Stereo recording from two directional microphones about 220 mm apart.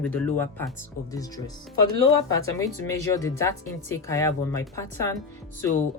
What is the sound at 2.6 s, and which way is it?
Speech, 15° left (ahead or behind).